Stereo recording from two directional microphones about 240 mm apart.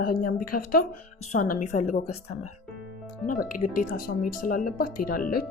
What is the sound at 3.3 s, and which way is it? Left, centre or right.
Speech, left.